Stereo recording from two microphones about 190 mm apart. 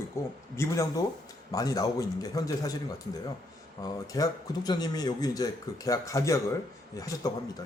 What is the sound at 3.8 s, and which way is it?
A man's voice, 20° left (ahead or behind).